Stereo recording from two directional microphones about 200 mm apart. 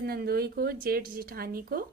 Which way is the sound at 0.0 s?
50° right (ahead or behind).